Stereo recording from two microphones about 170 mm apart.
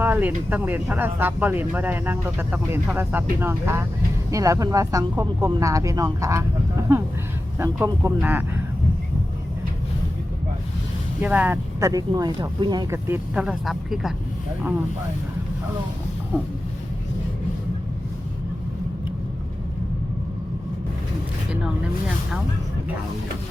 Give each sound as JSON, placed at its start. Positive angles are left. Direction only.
{"t": 0.0, "sound": "speech", "side_deg": -10}
{"t": 11.2, "sound": "speech", "side_deg": -10}
{"t": 13.1, "sound": "speech", "side_deg": -5}